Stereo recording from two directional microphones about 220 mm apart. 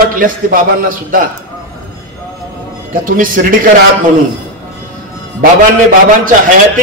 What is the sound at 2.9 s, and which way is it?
Speech, 40° right (ahead or behind).